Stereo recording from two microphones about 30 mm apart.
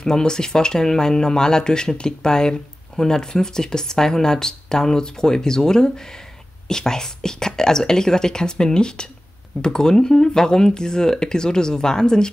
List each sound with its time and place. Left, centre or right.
0.0 s speech: left